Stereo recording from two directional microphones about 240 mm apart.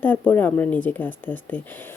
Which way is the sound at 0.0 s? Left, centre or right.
Centre.